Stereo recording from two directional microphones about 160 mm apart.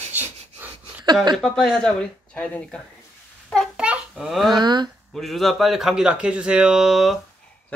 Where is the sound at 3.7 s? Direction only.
5° right (ahead or behind).